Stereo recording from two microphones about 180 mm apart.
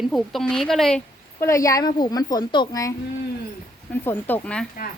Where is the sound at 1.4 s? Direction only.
15° left (ahead or behind).